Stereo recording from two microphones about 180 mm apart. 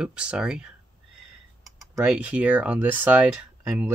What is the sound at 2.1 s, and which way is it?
Speech, 10° right (ahead or behind).